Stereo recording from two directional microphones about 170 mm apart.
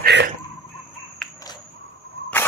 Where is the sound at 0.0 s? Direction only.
85° right.